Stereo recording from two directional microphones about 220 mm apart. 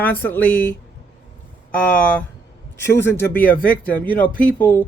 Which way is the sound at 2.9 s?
10° left (ahead or behind).